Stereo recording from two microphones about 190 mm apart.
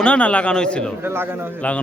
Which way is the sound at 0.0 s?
5° left (ahead or behind).